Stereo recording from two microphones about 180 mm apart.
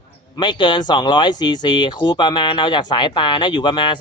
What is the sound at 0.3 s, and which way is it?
Speech, 25° left (ahead or behind).